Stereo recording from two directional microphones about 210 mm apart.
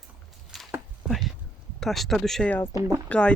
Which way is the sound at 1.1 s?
Centre (ahead or behind).